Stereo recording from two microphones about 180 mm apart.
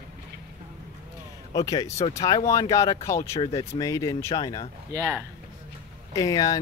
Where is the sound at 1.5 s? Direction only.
20° left (ahead or behind).